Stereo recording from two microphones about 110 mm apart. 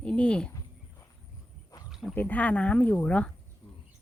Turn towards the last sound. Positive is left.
turn(degrees=10)  # may be behind; listen again after turning